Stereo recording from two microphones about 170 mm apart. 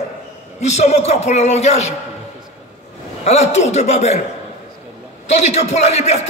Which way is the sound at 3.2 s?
40° left (ahead or behind).